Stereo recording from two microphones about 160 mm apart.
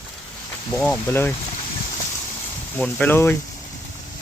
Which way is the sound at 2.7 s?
10° left (ahead or behind).